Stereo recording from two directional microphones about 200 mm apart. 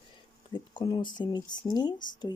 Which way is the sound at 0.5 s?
20° left (ahead or behind).